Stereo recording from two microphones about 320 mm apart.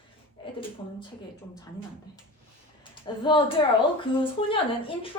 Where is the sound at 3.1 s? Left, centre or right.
Centre.